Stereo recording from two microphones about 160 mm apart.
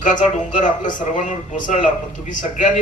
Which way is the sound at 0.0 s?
50° left (ahead or behind).